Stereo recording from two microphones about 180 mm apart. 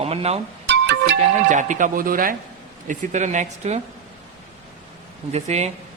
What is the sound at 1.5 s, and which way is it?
A man's voice, 45° right (ahead or behind).